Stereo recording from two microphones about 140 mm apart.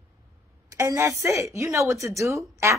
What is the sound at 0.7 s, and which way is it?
A woman's voice, 20° right (ahead or behind).